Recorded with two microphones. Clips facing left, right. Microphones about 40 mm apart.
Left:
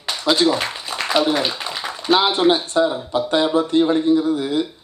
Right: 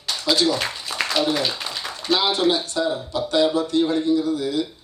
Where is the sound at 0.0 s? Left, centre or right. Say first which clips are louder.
Left 3 dB; left.